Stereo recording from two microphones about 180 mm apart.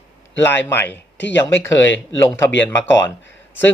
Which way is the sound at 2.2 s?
15° left (ahead or behind).